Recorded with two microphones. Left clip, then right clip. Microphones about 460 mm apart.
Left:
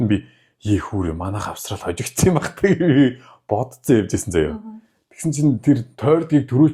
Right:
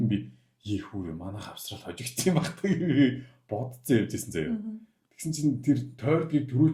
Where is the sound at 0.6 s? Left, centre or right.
Left.